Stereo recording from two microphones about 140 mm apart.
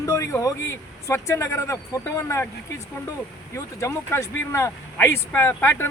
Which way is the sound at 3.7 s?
20° left (ahead or behind).